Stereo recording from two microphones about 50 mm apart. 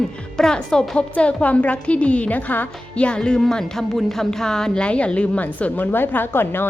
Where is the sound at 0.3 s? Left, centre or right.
Centre; by 2.6 s left.